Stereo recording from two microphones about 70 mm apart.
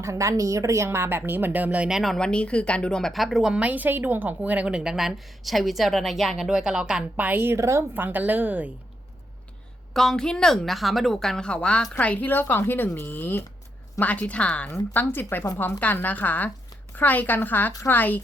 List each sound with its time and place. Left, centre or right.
0.0 s a woman's voice: right
1.9 s a woman's voice: centre
2.1 s a woman's voice: centre
3.5 s a woman's voice: right
4.7 s a woman's voice: centre
7.3 s a woman's voice: right
7.5 s a woman's voice: right
7.9 s a woman's voice: right
9.9 s a woman's voice: centre
15.1 s speech: left